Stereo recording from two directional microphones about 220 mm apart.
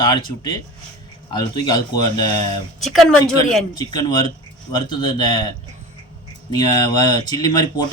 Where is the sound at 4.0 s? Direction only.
15° left (ahead or behind).